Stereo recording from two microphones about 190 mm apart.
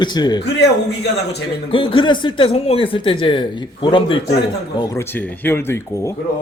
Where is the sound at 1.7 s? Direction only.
25° left (ahead or behind).